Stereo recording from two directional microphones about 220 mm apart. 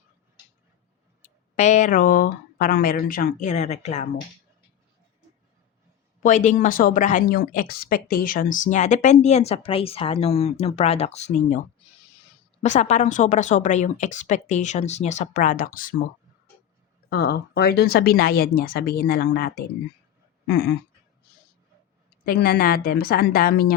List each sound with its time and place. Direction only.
1.2 s speech: 30° left (ahead or behind)
6.1 s speech: 35° left (ahead or behind)
12.6 s speech: 30° left (ahead or behind)
17.1 s speech: 45° left (ahead or behind)
22.3 s speech: 45° left (ahead or behind)